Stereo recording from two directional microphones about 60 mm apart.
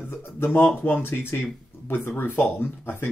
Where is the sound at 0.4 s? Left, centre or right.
Left.